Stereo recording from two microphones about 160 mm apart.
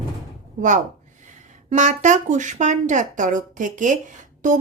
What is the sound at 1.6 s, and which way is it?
A woman's voice, 50° right (ahead or behind).